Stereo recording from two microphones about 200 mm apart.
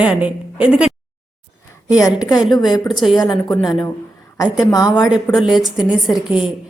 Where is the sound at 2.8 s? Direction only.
Centre (ahead or behind).